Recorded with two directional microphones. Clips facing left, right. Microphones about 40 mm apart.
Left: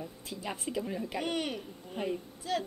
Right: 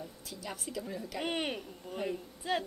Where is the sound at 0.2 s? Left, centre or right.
Left.